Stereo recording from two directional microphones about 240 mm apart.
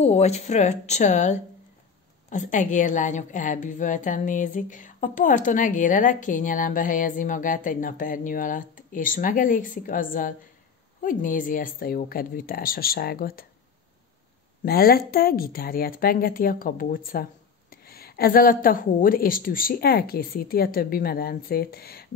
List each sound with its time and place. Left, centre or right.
0.0 s a woman's voice: left
14.6 s a woman's voice: left